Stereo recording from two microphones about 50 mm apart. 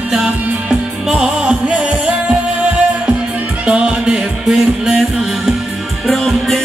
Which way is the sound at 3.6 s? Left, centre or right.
Right.